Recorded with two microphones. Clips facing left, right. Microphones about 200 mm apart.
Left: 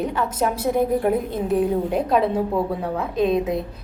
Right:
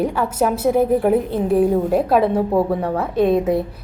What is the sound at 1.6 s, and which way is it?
Speech, 45° right (ahead or behind).